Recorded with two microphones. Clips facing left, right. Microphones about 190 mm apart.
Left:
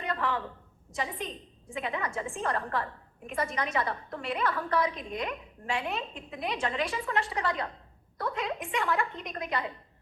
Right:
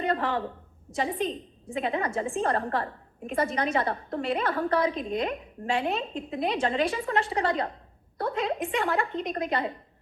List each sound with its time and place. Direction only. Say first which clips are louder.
0.0 s a woman's voice: right 5 dB; 30° right (ahead or behind)